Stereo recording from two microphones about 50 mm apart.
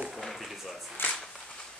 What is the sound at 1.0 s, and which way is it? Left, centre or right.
Speech, left.